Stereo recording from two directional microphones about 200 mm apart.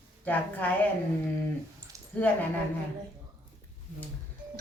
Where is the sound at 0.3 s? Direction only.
10° left (ahead or behind).